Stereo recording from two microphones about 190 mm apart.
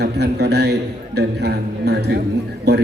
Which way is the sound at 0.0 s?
60° right (ahead or behind).